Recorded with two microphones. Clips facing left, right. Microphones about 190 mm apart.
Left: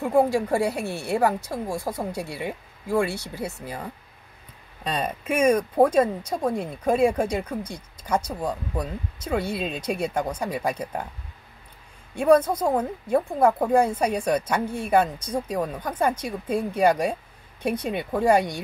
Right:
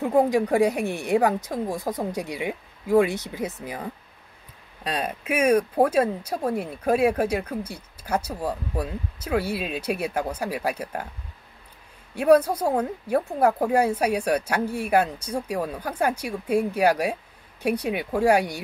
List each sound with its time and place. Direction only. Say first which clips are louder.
0.1 s speech: even; 20° right (ahead or behind)
4.8 s speech: left 1 dB; 5° right (ahead or behind)
12.2 s speech: even; 10° right (ahead or behind)